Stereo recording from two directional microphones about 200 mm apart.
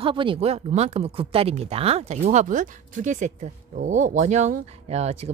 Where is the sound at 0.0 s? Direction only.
25° right (ahead or behind).